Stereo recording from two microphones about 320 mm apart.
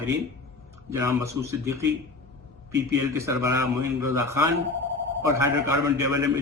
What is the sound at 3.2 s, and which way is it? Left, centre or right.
Speech, centre.